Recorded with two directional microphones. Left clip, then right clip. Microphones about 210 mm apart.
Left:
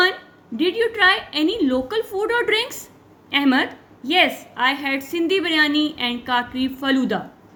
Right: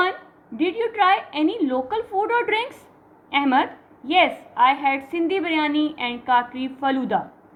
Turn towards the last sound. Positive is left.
turn(degrees=45)  # may be behind; listen again after turning